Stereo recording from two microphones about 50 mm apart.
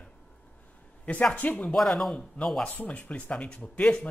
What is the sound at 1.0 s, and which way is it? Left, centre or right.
Speech, left.